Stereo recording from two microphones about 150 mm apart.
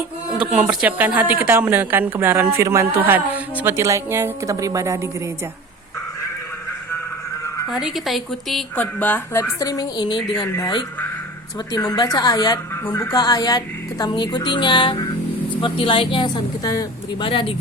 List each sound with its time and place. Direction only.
0.3 s a woman's voice: 5° right (ahead or behind); by 4.9 s 20° right (ahead or behind)
7.7 s a woman's voice: centre (ahead or behind)
8.7 s a woman's voice: 10° left (ahead or behind); by 12.5 s 25° left (ahead or behind)
12.8 s a woman's voice: 15° left (ahead or behind)
13.1 s a woman's voice: 25° left (ahead or behind)